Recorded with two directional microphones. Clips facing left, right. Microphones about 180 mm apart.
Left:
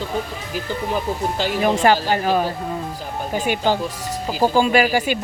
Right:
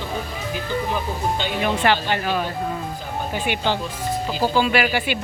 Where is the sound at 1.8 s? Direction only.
40° left (ahead or behind).